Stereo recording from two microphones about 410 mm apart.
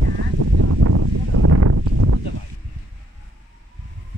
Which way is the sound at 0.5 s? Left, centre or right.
Right.